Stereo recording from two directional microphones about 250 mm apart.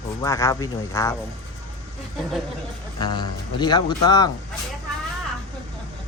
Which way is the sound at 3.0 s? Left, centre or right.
Centre.